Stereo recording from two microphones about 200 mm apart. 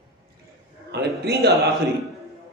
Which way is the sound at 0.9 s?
55° right (ahead or behind).